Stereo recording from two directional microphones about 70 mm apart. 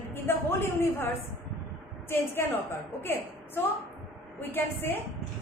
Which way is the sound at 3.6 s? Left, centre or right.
Left.